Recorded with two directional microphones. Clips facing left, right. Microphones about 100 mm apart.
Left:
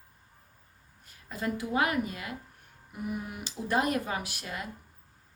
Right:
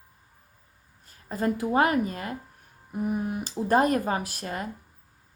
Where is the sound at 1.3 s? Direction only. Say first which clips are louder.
Right 6 dB; 40° right (ahead or behind).